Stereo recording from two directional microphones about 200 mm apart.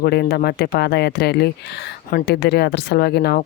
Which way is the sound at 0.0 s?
50° left (ahead or behind).